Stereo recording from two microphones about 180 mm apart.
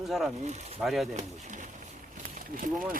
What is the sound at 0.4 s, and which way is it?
Speech, 40° right (ahead or behind).